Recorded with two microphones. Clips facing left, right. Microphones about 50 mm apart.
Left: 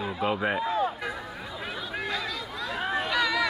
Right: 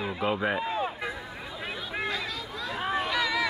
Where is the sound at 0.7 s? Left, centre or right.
Right.